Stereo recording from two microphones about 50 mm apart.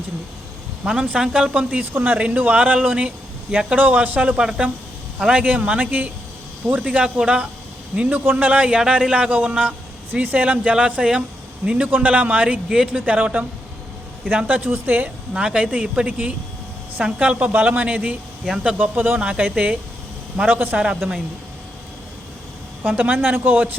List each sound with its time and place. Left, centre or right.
0.9 s speech: right
1.8 s speech: right
2.1 s a man's voice: right
4.4 s speech: centre
5.3 s a man's voice: right
8.2 s speech: right
8.4 s speech: right
11.9 s a man's voice: right
14.4 s a man's voice: right
15.3 s a man's voice: centre; by 18.2 s right
18.5 s speech: right
18.8 s a man's voice: right
22.8 s a man's voice: right